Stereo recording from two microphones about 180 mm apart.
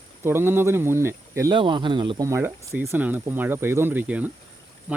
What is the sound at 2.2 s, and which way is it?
Speech, 15° right (ahead or behind).